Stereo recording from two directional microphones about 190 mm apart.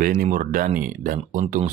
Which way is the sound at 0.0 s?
45° right (ahead or behind).